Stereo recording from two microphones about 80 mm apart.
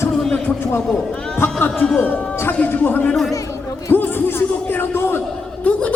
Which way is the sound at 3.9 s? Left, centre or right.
Left.